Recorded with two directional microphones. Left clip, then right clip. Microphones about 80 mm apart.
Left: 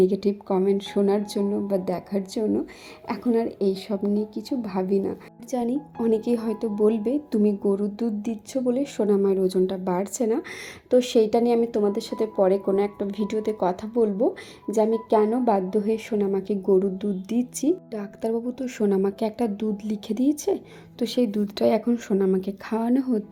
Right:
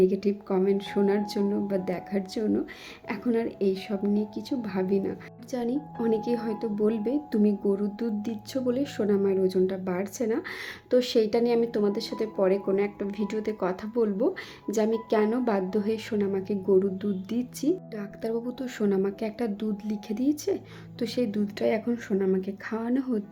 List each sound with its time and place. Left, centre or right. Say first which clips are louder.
0.0 s a woman's voice: left 2 dB; left
0.4 s a woman's voice: left 3 dB; left
9.0 s a woman's voice: left 4 dB; left
16.1 s a woman's voice: left 4 dB; left